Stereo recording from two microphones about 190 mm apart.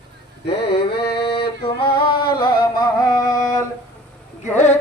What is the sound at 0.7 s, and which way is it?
Mantra, 55° left (ahead or behind).